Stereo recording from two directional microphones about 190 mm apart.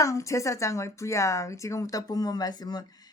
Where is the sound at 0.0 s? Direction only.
15° left (ahead or behind).